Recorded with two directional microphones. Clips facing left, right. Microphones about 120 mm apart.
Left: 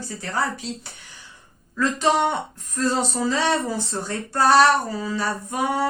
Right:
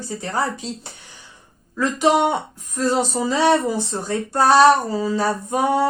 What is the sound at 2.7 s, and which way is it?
Speech, 15° right (ahead or behind).